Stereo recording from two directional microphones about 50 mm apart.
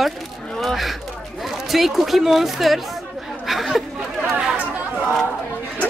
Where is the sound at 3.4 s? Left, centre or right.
Centre.